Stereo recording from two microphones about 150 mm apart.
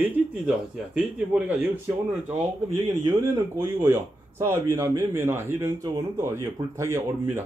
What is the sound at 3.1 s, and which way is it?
A man's voice, 15° right (ahead or behind).